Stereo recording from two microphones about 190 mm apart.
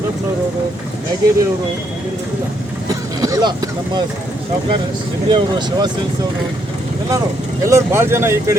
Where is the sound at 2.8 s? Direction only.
20° right (ahead or behind).